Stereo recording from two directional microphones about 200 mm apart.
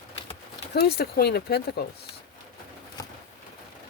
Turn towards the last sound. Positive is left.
turn(degrees=20)  # may be behind; listen again after turning